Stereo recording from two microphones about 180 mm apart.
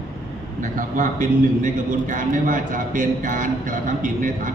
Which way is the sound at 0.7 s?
45° right (ahead or behind).